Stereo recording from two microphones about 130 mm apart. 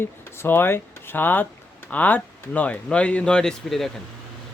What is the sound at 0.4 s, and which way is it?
Speech, 15° left (ahead or behind).